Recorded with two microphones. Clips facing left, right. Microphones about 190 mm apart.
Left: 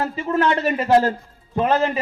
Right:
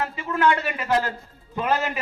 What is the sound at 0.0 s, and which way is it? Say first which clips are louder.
A man's voice: left 2 dB; 35° left (ahead or behind).